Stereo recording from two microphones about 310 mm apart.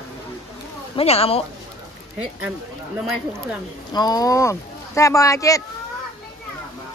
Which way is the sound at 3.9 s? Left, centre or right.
Centre.